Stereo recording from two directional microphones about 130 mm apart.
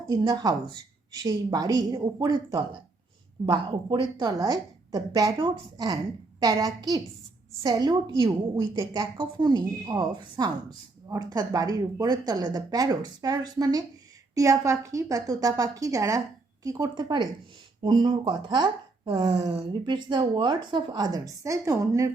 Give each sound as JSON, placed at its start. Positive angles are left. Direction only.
{"t": 0.1, "sound": "a woman's voice", "side_deg": -30}